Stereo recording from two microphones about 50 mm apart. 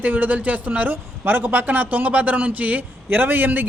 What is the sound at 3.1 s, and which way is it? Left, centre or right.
Speech, right.